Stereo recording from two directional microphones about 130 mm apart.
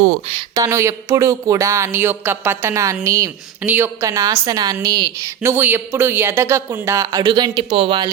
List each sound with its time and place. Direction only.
0.5 s a woman's voice: 25° right (ahead or behind); by 8.1 s 40° right (ahead or behind)